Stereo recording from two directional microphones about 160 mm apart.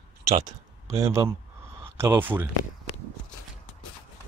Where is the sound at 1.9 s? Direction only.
15° right (ahead or behind).